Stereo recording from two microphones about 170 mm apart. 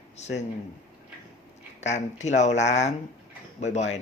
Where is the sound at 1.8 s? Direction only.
40° left (ahead or behind).